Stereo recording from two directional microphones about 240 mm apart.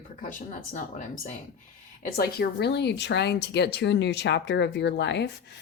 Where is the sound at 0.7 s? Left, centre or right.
Left.